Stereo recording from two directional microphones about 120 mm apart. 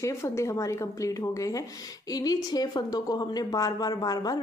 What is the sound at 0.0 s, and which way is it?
A woman's voice, 25° left (ahead or behind).